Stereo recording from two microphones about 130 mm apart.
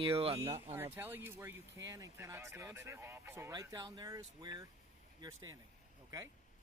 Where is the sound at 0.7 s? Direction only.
15° right (ahead or behind).